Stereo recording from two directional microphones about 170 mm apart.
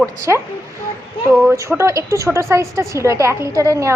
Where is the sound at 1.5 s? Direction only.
15° right (ahead or behind).